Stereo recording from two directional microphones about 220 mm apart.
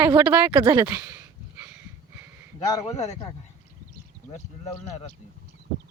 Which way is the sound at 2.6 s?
15° left (ahead or behind).